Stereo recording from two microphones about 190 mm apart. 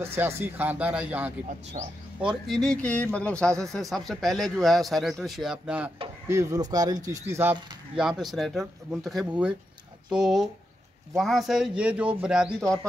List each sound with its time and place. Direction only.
0.0 s speech: 10° right (ahead or behind)
1.8 s speech: 40° right (ahead or behind)
2.2 s speech: centre (ahead or behind)
6.2 s speech: 15° right (ahead or behind)
8.0 s speech: centre (ahead or behind)